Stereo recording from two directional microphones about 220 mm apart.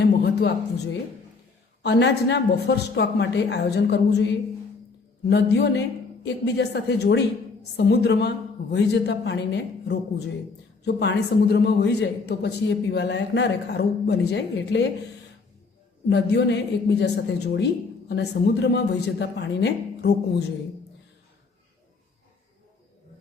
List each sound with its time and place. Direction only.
0.0 s a sound: 50° left (ahead or behind)
1.8 s a man's voice: 50° left (ahead or behind)
16.0 s a man's voice: 50° left (ahead or behind)